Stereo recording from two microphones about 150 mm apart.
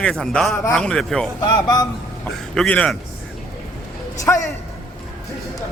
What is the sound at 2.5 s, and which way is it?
Speech, 10° left (ahead or behind).